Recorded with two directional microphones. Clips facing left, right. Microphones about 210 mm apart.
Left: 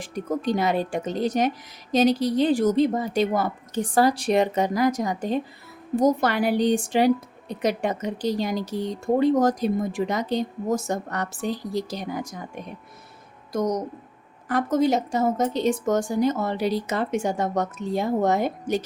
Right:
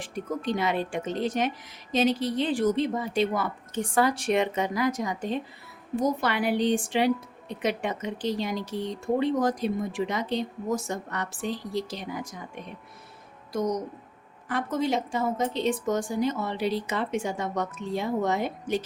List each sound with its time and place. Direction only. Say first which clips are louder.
0.0 s a woman's voice: left 4 dB; 40° left (ahead or behind)
13.5 s a woman's voice: left 3 dB; 45° left (ahead or behind)